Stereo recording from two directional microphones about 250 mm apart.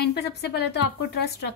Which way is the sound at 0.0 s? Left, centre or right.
Left.